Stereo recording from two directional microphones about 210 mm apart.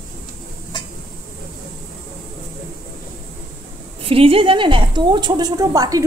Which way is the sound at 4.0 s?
25° right (ahead or behind).